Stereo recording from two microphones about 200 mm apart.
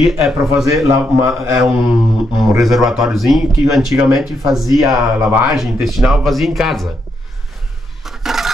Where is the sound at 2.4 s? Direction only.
Centre (ahead or behind).